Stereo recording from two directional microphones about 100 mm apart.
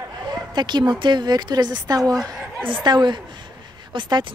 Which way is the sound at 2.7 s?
50° right (ahead or behind).